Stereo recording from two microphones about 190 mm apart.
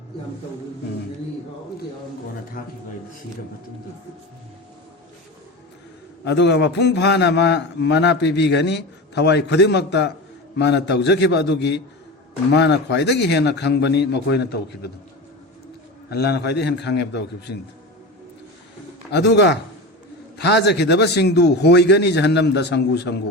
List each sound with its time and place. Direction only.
2.6 s a man's voice: 45° left (ahead or behind)
6.2 s a man's voice: 65° left (ahead or behind)
16.0 s a man's voice: 60° left (ahead or behind)
19.1 s a man's voice: 65° left (ahead or behind)